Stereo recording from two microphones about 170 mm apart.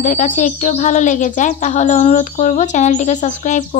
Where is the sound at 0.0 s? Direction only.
45° left (ahead or behind).